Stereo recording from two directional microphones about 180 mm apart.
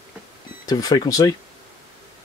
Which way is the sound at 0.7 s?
20° left (ahead or behind).